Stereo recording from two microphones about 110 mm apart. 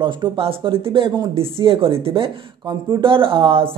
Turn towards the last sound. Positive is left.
turn(degrees=-55)  # may be behind; listen again after turning